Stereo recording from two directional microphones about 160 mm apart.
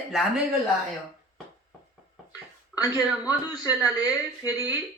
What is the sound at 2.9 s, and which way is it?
Speech, 25° left (ahead or behind).